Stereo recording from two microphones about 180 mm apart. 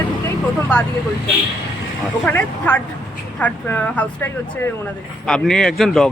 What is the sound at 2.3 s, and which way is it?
Speech, 10° left (ahead or behind).